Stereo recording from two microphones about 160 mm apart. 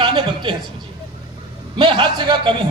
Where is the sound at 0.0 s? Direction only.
30° right (ahead or behind).